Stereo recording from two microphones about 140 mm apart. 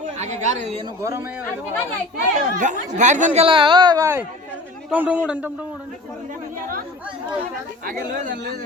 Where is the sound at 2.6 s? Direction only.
60° right (ahead or behind).